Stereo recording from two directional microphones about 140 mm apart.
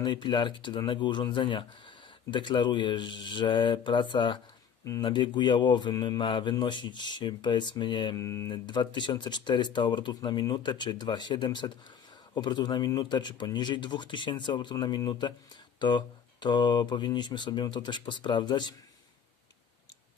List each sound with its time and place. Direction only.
0.0 s speech: 35° left (ahead or behind)